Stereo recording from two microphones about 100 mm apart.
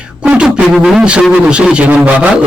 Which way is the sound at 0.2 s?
10° right (ahead or behind).